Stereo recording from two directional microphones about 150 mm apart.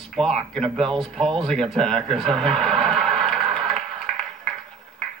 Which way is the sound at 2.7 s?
35° right (ahead or behind).